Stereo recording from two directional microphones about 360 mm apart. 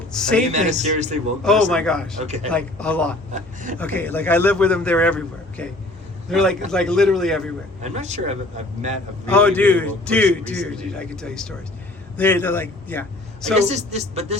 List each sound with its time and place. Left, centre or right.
0.1 s a man's voice: centre
0.5 s speech: centre
1.7 s a man's voice: centre
2.2 s speech: centre
2.5 s a man's voice: centre
3.3 s speech: right
3.8 s a man's voice: centre
7.8 s speech: centre
9.3 s a man's voice: centre
13.6 s speech: centre